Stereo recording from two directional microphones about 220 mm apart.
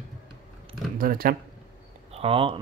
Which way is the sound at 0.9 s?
40° right (ahead or behind).